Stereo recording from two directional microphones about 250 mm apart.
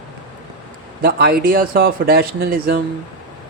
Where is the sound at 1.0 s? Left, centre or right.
Right.